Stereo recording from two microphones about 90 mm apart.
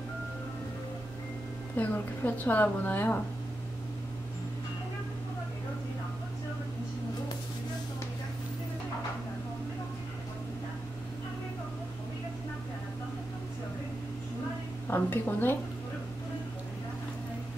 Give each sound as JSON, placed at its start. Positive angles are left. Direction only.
{"t": 1.8, "sound": "a woman's voice", "side_deg": 20}
{"t": 14.9, "sound": "a woman's voice", "side_deg": 20}